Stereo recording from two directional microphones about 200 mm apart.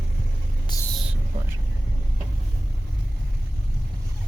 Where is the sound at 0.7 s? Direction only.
20° left (ahead or behind).